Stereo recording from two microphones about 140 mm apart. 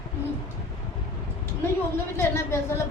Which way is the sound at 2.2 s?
20° left (ahead or behind).